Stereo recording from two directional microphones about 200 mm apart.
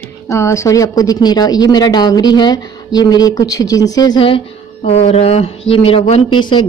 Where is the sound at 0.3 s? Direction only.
15° left (ahead or behind).